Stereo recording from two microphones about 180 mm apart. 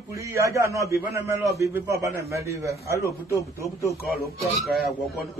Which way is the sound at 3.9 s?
60° left (ahead or behind).